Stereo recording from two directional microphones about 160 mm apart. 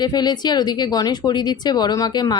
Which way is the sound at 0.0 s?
25° left (ahead or behind).